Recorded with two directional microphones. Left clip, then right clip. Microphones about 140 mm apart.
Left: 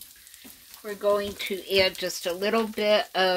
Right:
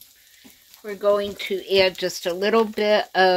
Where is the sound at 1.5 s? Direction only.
25° right (ahead or behind).